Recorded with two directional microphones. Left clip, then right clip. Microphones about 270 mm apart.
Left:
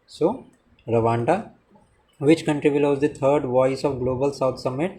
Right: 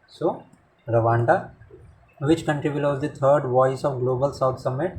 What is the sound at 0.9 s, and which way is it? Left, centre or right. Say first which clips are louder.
Speech: right 1 dB; left.